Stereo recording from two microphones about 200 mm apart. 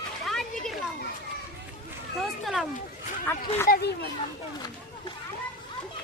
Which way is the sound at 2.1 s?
Centre (ahead or behind).